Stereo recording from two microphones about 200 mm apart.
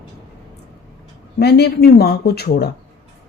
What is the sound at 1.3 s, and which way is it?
Speech, 50° left (ahead or behind).